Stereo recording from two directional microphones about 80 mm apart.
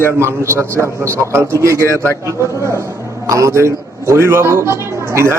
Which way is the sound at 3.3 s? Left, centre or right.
Right.